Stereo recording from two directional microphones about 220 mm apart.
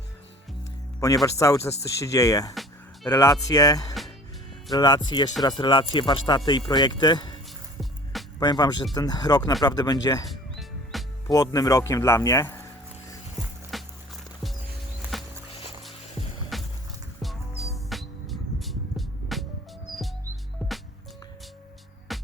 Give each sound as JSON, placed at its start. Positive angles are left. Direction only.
{"t": 0.9, "sound": "speech", "side_deg": 15}
{"t": 2.6, "sound": "music", "side_deg": 0}
{"t": 3.5, "sound": "speech", "side_deg": 15}
{"t": 8.4, "sound": "speech", "side_deg": 20}
{"t": 10.9, "sound": "music", "side_deg": 0}
{"t": 11.3, "sound": "speech", "side_deg": 15}
{"t": 13.7, "sound": "music", "side_deg": 0}
{"t": 16.5, "sound": "vehicle", "side_deg": 0}
{"t": 17.8, "sound": "music", "side_deg": 0}
{"t": 22.1, "sound": "music", "side_deg": 0}